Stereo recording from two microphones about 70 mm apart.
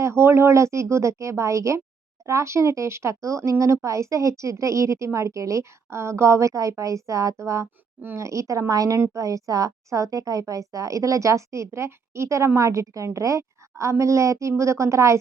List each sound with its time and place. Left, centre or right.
0.0 s speech: right